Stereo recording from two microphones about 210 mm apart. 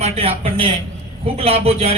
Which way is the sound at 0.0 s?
25° right (ahead or behind).